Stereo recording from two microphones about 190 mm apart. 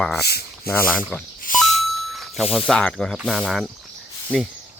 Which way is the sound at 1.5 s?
45° left (ahead or behind).